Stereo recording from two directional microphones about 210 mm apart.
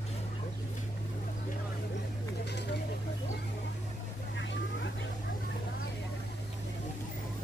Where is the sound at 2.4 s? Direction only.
55° left (ahead or behind).